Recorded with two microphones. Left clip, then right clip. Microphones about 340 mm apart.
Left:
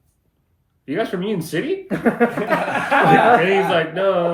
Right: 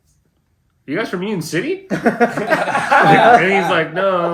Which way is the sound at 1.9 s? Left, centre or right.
Right.